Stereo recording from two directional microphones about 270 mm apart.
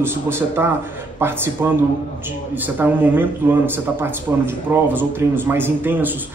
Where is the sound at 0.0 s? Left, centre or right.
Centre.